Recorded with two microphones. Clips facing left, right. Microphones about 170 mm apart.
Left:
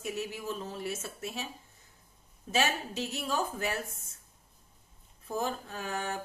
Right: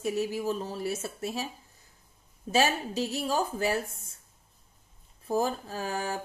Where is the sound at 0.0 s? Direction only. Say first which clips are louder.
Right 7 dB; 35° right (ahead or behind).